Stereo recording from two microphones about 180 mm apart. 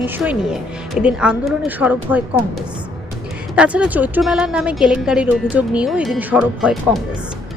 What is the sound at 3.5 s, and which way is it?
Speech, 5° right (ahead or behind).